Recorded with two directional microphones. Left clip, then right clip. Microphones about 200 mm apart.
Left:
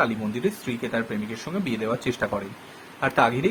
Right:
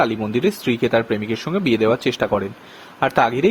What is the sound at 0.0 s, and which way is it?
Speech, 40° right (ahead or behind).